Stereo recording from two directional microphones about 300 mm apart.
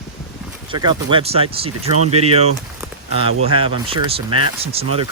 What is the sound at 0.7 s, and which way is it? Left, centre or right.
Speech, centre.